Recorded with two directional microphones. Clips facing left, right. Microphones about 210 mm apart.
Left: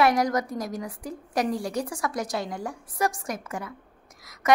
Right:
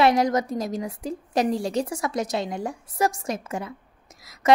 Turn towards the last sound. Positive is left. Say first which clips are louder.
# right 2 dB
turn(degrees=-25)  # may be behind; listen again after turning